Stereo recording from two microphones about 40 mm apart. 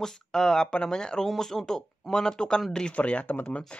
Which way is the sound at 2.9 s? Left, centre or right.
Left.